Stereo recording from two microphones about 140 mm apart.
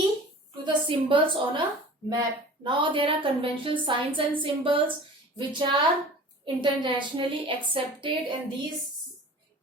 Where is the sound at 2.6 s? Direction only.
35° right (ahead or behind).